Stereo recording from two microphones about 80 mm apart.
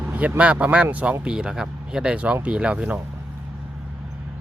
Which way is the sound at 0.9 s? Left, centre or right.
Centre.